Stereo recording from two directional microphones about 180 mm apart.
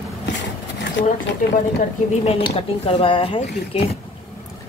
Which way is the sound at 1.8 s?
35° left (ahead or behind).